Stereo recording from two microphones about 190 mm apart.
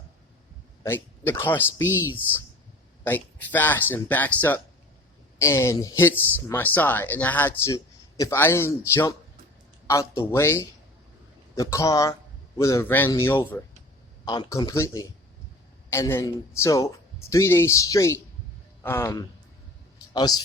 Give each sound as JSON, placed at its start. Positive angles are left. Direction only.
{"t": 0.8, "sound": "speech", "side_deg": 10}
{"t": 3.0, "sound": "speech", "side_deg": 10}